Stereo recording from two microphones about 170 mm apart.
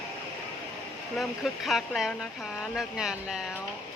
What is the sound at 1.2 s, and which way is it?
Speech, centre (ahead or behind).